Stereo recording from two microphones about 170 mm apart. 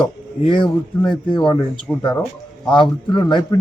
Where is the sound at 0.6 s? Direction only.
5° left (ahead or behind).